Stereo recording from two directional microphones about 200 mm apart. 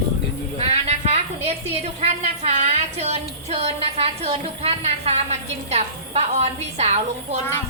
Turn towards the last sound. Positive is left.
turn(degrees=-35)  # may be behind; listen again after turning